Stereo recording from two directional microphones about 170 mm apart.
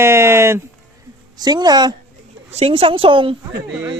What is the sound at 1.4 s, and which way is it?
Speech, 25° right (ahead or behind).